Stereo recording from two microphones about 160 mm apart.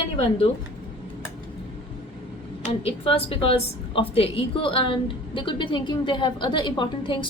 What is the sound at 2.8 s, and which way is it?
A woman's voice, 35° left (ahead or behind).